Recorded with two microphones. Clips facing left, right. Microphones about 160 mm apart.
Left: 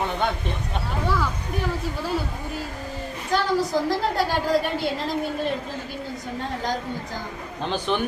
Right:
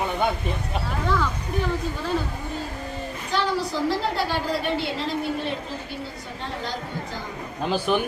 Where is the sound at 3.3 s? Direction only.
45° left (ahead or behind).